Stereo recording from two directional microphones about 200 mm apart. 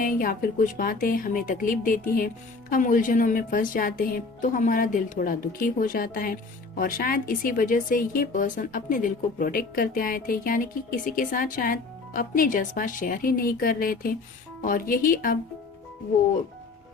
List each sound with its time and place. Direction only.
0.0 s speech: 45° left (ahead or behind)